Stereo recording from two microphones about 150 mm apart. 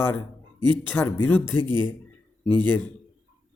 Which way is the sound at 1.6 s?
30° right (ahead or behind).